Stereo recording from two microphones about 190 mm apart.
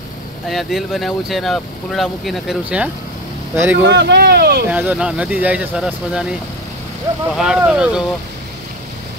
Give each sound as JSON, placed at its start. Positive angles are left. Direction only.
{"t": 0.5, "sound": "speech", "side_deg": 0}
{"t": 3.8, "sound": "speech", "side_deg": -70}
{"t": 4.6, "sound": "speech", "side_deg": -10}
{"t": 7.3, "sound": "speech", "side_deg": -5}